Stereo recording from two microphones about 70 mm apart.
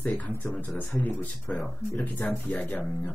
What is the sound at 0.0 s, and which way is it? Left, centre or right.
Speech, left.